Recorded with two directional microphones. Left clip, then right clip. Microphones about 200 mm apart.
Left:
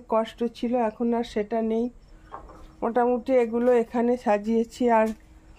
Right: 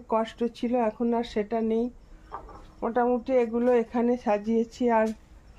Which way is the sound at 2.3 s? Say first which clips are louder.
Right 1 dB; 10° right (ahead or behind).